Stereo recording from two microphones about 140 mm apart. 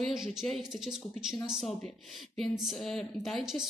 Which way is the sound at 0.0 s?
5° right (ahead or behind).